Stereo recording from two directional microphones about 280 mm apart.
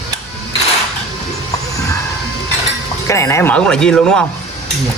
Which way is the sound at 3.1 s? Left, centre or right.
Centre.